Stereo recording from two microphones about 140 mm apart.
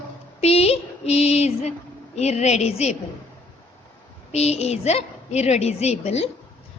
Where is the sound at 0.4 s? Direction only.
50° left (ahead or behind).